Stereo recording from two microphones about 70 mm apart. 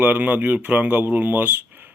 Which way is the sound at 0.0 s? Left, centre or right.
Right.